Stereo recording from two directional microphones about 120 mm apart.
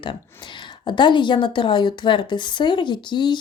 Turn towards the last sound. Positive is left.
turn(degrees=40)  # may be behind; listen again after turning